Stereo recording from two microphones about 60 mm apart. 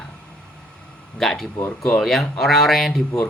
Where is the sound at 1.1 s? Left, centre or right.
Centre.